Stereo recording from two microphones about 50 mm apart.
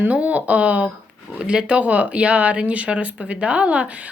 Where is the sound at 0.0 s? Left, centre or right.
Right.